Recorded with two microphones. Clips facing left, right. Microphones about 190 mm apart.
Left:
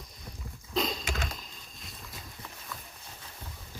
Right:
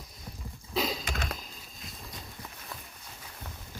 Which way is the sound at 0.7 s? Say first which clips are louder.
Even; 5° right (ahead or behind).